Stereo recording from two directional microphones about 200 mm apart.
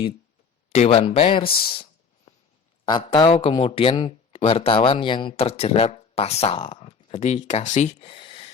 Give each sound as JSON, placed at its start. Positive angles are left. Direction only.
{"t": 0.7, "sound": "speech", "side_deg": 30}
{"t": 1.7, "sound": "a sound", "side_deg": 25}
{"t": 2.8, "sound": "speech", "side_deg": 20}